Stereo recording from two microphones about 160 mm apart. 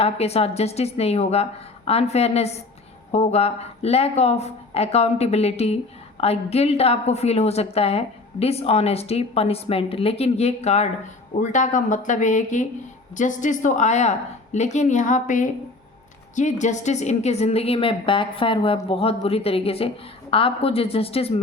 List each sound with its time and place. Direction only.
0.0 s a woman's voice: 40° left (ahead or behind)